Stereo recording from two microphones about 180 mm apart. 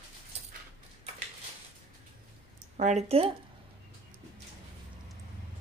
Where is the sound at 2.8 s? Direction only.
40° right (ahead or behind).